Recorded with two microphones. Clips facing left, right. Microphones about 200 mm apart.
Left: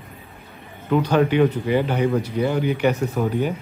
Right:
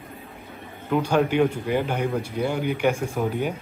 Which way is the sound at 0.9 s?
10° right (ahead or behind).